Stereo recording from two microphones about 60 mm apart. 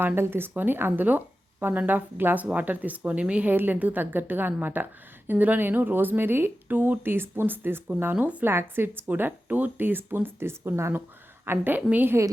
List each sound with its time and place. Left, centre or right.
0.0 s a woman's voice: right
8.4 s speech: right